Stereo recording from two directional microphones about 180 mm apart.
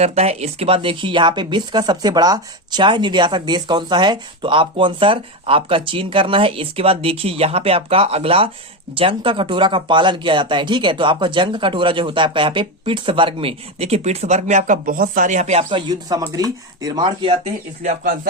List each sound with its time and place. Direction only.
0.0 s speech: 35° right (ahead or behind)
15.9 s speech: 20° right (ahead or behind); by 18.1 s 40° right (ahead or behind)